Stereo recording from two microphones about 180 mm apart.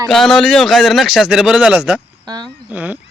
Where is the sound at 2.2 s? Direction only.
25° right (ahead or behind).